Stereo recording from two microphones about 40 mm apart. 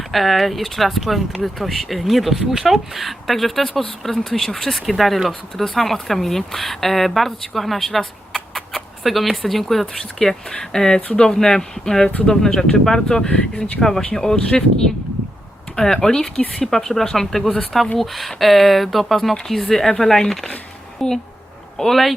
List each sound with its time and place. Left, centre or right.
0.1 s speech: centre
13.2 s speech: left
15.7 s speech: centre